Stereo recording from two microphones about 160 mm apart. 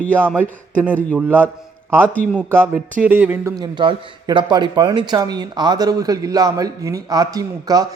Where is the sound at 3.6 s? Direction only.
25° right (ahead or behind).